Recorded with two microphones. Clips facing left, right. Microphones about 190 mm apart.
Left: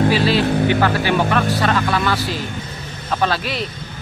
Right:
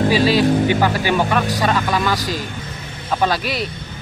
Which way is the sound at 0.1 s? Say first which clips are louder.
Right 2 dB; 15° right (ahead or behind).